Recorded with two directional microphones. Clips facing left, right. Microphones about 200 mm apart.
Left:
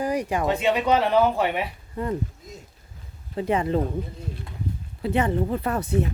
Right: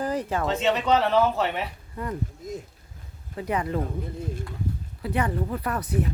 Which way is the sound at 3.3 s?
25° left (ahead or behind).